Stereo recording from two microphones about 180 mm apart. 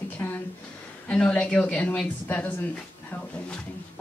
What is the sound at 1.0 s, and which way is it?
Speech, 5° left (ahead or behind).